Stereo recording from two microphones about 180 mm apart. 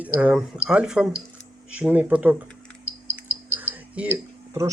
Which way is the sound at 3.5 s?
10° right (ahead or behind).